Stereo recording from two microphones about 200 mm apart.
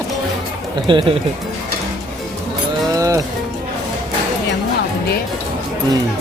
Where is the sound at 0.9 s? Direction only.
25° right (ahead or behind).